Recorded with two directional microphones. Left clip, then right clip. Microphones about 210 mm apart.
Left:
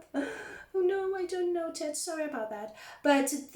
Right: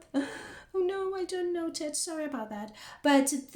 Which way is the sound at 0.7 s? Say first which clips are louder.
Left 1 dB; 50° right (ahead or behind).